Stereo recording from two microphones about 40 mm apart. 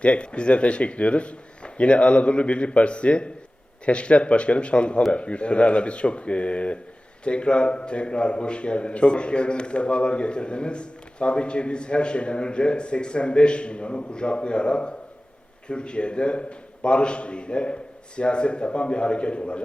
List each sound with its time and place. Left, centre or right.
0.0 s a man's voice: left